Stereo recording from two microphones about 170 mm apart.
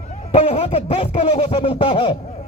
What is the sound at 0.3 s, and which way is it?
A man's voice, 35° left (ahead or behind).